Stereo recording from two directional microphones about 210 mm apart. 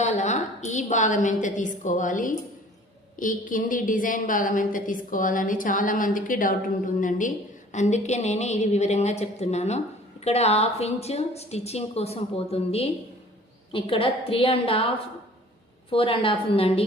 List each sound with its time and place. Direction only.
0.0 s a woman's voice: 35° left (ahead or behind)